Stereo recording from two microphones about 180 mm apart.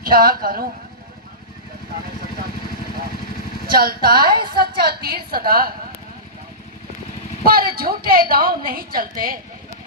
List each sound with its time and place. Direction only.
0.0 s speech: 55° right (ahead or behind)
3.7 s speech: 55° right (ahead or behind)
7.4 s a woman's voice: 55° right (ahead or behind)